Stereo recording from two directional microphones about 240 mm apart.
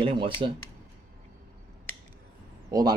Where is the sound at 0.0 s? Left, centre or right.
Right.